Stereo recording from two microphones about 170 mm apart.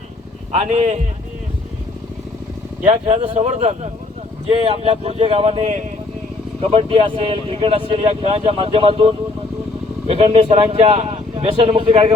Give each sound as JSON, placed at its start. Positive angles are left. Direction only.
{"t": 0.5, "sound": "speech", "side_deg": -40}
{"t": 2.8, "sound": "speech", "side_deg": -40}